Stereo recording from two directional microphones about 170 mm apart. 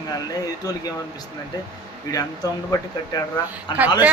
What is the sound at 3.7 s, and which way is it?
Speech, 25° left (ahead or behind).